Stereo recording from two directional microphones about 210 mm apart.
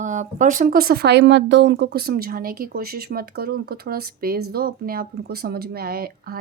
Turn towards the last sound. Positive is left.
turn(degrees=-45)  # may be behind; listen again after turning